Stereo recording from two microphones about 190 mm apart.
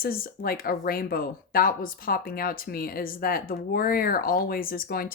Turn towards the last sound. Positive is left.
turn(degrees=50)  # may be behind; listen again after turning